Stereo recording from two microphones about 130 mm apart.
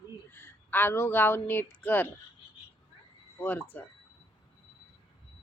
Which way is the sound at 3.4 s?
10° left (ahead or behind).